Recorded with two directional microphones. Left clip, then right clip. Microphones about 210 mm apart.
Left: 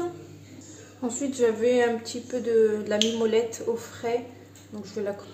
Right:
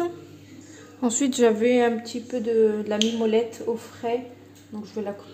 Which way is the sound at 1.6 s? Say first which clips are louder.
Right 2 dB; 30° right (ahead or behind).